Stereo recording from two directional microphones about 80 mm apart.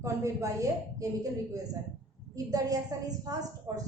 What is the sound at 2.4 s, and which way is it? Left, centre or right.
A woman's voice, right.